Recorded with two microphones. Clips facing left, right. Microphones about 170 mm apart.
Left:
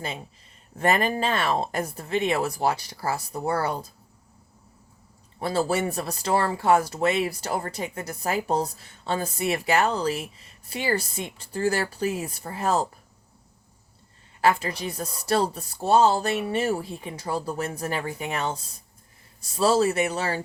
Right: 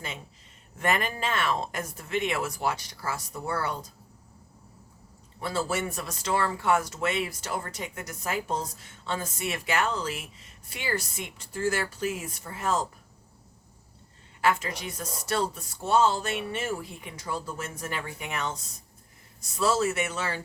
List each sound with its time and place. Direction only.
0.8 s speech: 35° left (ahead or behind)
5.4 s speech: 35° left (ahead or behind)
14.4 s speech: 35° left (ahead or behind)